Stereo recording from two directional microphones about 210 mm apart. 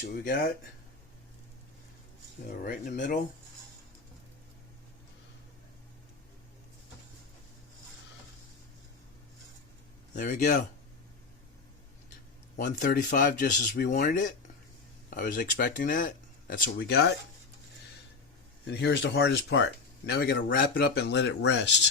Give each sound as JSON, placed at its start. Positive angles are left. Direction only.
{"t": 0.0, "sound": "speech", "side_deg": 40}
{"t": 2.6, "sound": "speech", "side_deg": 40}
{"t": 10.2, "sound": "speech", "side_deg": 35}
{"t": 12.5, "sound": "speech", "side_deg": 40}
{"t": 16.7, "sound": "speech", "side_deg": 50}
{"t": 18.6, "sound": "speech", "side_deg": 55}